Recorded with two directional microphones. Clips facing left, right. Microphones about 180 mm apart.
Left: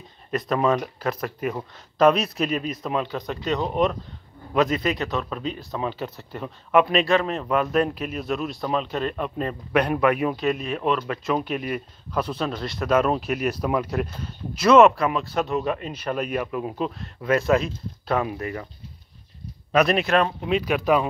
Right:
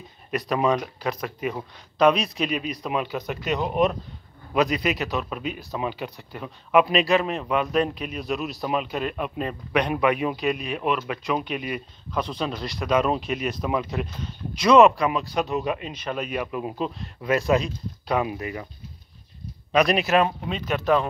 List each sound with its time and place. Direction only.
0.4 s speech: 5° right (ahead or behind)
2.9 s speech: 10° right (ahead or behind)
4.6 s speech: 15° right (ahead or behind)
4.9 s speech: 5° right (ahead or behind)
15.9 s speech: 5° left (ahead or behind)
16.3 s speech: 5° right (ahead or behind)
18.2 s speech: 10° right (ahead or behind)
19.7 s speech: centre (ahead or behind)
20.4 s speech: 5° left (ahead or behind)